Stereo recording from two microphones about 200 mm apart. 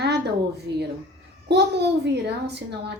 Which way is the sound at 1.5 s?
55° right (ahead or behind).